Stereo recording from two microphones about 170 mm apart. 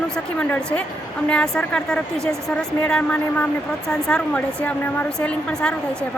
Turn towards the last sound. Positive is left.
turn(degrees=5)  # may be behind; listen again after turning